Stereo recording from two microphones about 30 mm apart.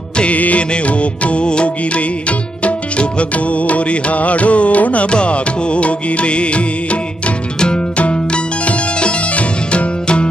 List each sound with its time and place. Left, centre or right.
0.3 s music: left
2.0 s music: left
5.1 s music: left